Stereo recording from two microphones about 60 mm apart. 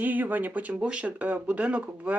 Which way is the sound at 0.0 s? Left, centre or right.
Right.